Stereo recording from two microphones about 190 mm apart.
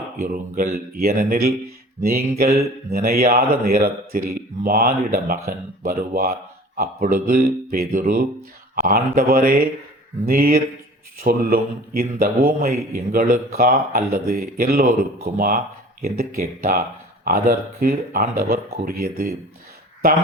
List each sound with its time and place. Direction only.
0.2 s speech: 50° right (ahead or behind)